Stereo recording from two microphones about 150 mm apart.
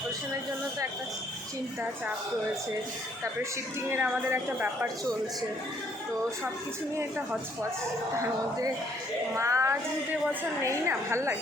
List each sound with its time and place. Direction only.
3.8 s a woman's voice: 15° right (ahead or behind)
9.3 s a woman's voice: 20° right (ahead or behind)